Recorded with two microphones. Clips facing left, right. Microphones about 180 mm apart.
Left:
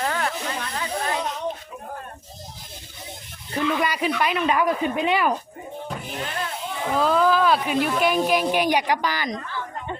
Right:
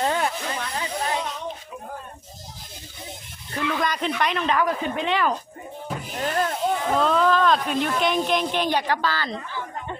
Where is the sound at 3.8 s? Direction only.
10° left (ahead or behind).